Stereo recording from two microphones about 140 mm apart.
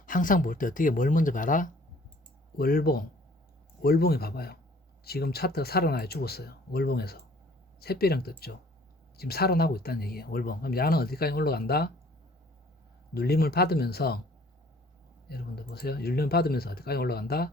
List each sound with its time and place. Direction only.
0.0 s speech: 75° left (ahead or behind)
2.6 s speech: 90° left
13.3 s speech: 90° left
15.7 s speech: 90° left